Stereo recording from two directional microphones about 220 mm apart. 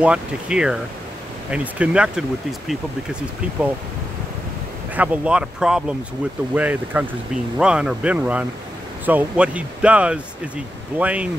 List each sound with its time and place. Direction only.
0.0 s speech: 5° right (ahead or behind)
4.9 s speech: 5° right (ahead or behind)